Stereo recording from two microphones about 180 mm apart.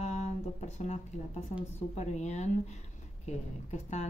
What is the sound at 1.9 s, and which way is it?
A woman's voice, 40° left (ahead or behind).